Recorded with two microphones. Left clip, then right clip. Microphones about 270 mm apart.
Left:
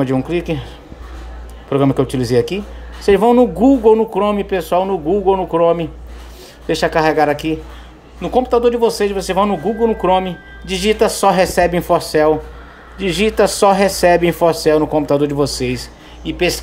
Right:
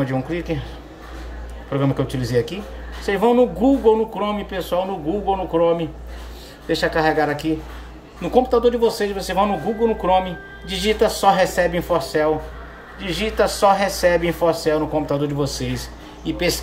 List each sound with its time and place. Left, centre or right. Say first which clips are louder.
0.0 s speech: left 6 dB; centre
1.7 s speech: left 7 dB; left